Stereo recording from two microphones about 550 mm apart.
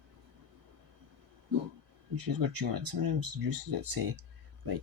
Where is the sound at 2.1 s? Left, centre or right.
Right.